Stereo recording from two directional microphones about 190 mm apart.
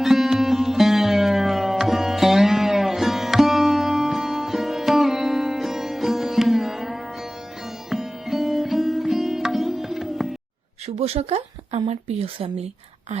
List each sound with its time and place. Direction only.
0.0 s sitar: centre (ahead or behind)
10.8 s speech: 35° right (ahead or behind)